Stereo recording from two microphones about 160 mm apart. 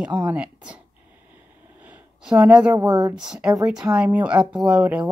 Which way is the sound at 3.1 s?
5° right (ahead or behind).